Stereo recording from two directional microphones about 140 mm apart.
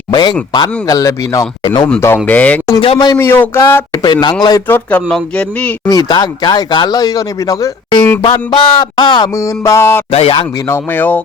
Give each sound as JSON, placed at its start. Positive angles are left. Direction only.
{"t": 0.1, "sound": "a sound", "side_deg": 30}
{"t": 0.5, "sound": "a man's voice", "side_deg": 30}
{"t": 1.6, "sound": "speech", "side_deg": 35}
{"t": 2.0, "sound": "speech", "side_deg": 15}
{"t": 2.8, "sound": "speech", "side_deg": 35}
{"t": 3.2, "sound": "speech", "side_deg": 15}
{"t": 4.0, "sound": "speech", "side_deg": 30}
{"t": 4.7, "sound": "speech", "side_deg": 10}
{"t": 5.9, "sound": "a man's voice", "side_deg": 25}
{"t": 8.2, "sound": "speech", "side_deg": 35}
{"t": 10.1, "sound": "speech", "side_deg": 45}
{"t": 10.7, "sound": "speech", "side_deg": 15}